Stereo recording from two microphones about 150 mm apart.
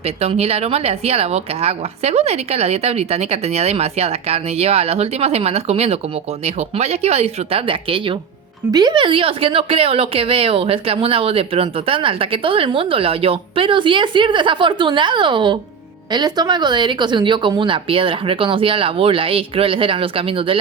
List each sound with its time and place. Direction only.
0.0 s speech: 45° right (ahead or behind)